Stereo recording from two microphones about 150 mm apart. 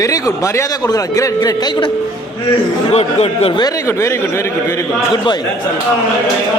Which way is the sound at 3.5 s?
25° left (ahead or behind).